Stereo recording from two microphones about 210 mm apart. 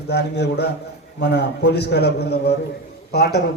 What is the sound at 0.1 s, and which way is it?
A man's voice, 55° left (ahead or behind).